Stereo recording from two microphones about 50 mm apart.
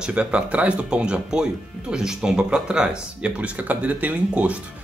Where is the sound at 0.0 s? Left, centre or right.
Right.